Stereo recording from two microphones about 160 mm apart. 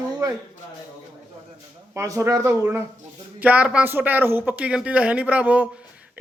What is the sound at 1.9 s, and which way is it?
A man's voice, 15° right (ahead or behind).